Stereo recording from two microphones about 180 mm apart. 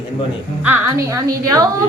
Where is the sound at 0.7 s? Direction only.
15° right (ahead or behind).